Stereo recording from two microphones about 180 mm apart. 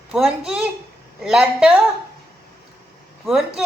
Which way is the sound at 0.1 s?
5° right (ahead or behind).